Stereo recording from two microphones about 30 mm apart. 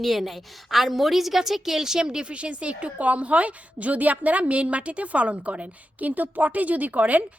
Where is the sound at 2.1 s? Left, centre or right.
Right.